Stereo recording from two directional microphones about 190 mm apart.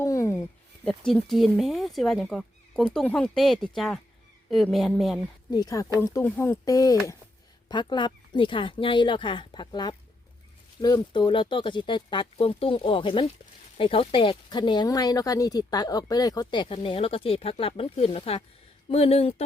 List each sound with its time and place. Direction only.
0.0 s a sound: 15° left (ahead or behind)
0.9 s speech: centre (ahead or behind)
5.5 s speech: 20° left (ahead or behind)